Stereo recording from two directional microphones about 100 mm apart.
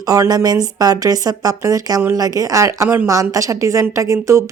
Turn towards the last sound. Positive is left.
turn(degrees=-30)  # may be behind; listen again after turning